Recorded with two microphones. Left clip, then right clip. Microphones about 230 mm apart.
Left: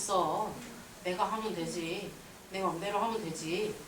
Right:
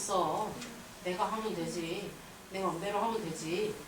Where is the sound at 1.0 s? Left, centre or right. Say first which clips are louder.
Left 1 dB; centre.